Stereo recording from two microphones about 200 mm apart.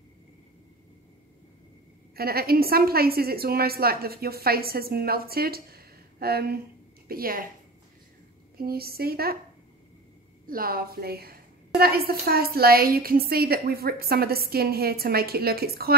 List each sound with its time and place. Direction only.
2.1 s a woman's voice: 50° right (ahead or behind)
8.5 s a woman's voice: 50° right (ahead or behind)
10.4 s a woman's voice: 45° right (ahead or behind)